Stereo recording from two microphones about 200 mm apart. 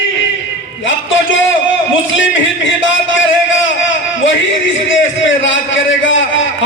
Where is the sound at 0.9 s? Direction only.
70° left (ahead or behind).